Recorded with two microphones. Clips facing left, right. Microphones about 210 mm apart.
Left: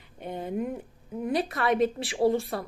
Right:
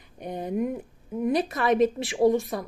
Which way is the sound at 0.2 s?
20° right (ahead or behind).